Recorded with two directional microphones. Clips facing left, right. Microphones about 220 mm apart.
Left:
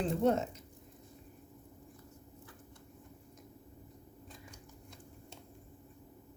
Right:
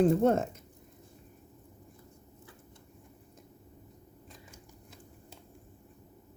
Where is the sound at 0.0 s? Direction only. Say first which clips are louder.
Right 6 dB; 50° right (ahead or behind).